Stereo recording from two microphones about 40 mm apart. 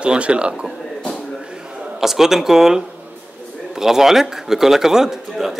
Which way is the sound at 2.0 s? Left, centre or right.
Centre.